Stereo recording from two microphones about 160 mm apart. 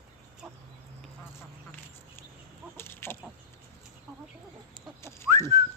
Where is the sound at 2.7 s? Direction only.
15° left (ahead or behind).